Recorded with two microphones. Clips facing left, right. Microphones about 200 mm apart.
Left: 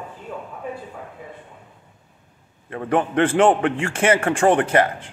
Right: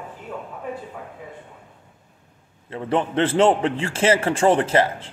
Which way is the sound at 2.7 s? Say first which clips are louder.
Left 2 dB; 25° right (ahead or behind).